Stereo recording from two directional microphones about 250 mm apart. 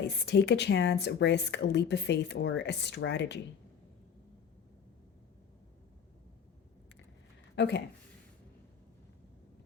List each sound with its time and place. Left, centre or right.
0.0 s speech: left
7.5 s speech: left